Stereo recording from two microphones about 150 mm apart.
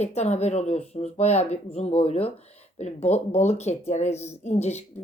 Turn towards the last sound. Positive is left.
turn(degrees=45)  # may be behind; listen again after turning